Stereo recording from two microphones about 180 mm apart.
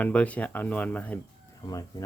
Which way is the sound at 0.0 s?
10° left (ahead or behind).